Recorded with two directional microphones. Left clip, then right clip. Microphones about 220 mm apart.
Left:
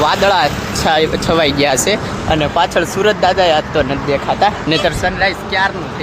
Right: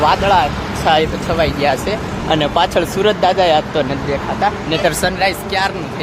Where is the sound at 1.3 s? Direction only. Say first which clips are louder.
Left 2 dB; 35° left (ahead or behind).